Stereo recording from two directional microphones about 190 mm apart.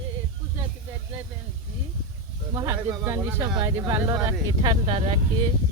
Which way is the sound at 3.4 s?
25° right (ahead or behind).